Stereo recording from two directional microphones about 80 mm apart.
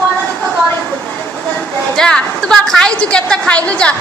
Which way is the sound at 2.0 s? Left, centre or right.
Centre.